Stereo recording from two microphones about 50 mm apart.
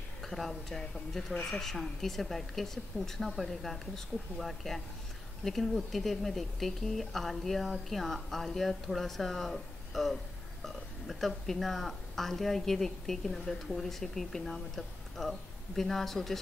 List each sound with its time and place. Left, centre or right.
0.2 s speech: centre